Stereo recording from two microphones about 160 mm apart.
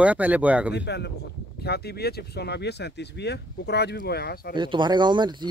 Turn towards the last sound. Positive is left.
turn(degrees=-30)  # may be behind; listen again after turning